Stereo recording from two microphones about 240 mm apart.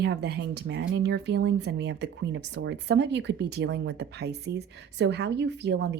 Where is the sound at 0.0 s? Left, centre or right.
Right.